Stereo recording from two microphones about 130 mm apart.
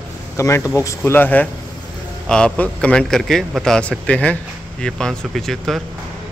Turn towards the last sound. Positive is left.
turn(degrees=0)  # may be behind; listen again after turning